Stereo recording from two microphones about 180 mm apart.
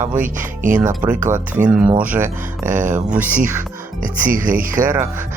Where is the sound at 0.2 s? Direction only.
45° right (ahead or behind).